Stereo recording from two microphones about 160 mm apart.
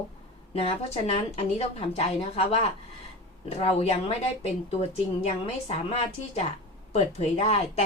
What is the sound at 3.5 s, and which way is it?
A woman's voice, 40° left (ahead or behind).